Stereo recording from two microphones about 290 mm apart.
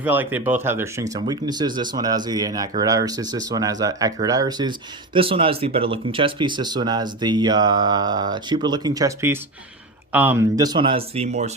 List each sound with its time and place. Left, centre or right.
0.0 s speech: centre; by 11.5 s right